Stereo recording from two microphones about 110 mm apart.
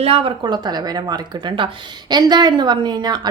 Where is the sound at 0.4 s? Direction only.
40° right (ahead or behind).